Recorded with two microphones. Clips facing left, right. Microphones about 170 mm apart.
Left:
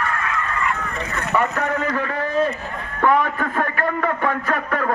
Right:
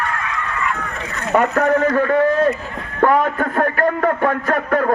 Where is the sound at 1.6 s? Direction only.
40° right (ahead or behind).